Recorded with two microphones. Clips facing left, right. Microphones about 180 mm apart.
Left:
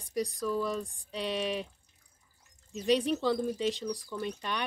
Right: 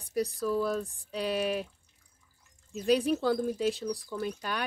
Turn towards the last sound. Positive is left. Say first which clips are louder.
# right 1 dB
turn(degrees=-5)  # may be behind; listen again after turning